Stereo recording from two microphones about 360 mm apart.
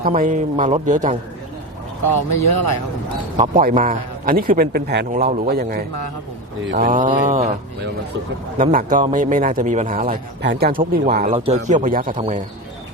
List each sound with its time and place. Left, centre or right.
0.0 s a man's voice: right
2.0 s speech: left
3.3 s a man's voice: centre
8.5 s a man's voice: right